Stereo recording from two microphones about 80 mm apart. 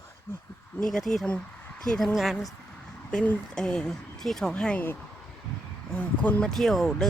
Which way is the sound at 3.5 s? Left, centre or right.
Centre.